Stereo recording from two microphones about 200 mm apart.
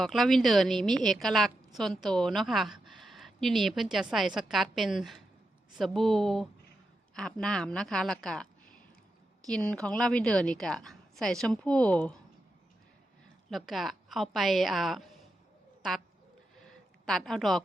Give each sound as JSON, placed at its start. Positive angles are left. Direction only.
{"t": 0.0, "sound": "a woman's voice", "side_deg": 0}
{"t": 9.5, "sound": "a woman's voice", "side_deg": 5}
{"t": 13.5, "sound": "a woman's voice", "side_deg": 0}
{"t": 16.6, "sound": "a sound", "side_deg": 0}